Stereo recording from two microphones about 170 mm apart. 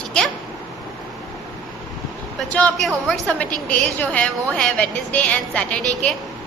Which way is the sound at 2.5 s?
5° left (ahead or behind).